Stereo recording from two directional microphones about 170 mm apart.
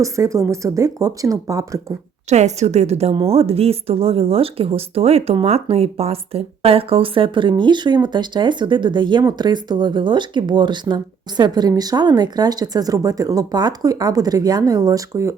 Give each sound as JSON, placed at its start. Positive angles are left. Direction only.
{"t": 0.0, "sound": "a woman's voice", "side_deg": -20}
{"t": 2.3, "sound": "a woman's voice", "side_deg": -40}